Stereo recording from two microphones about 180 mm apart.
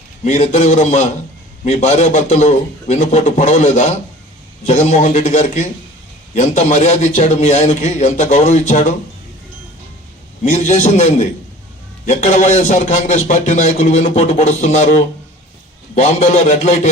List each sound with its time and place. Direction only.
0.3 s a man's voice: 40° left (ahead or behind)
10.5 s a man's voice: 40° left (ahead or behind)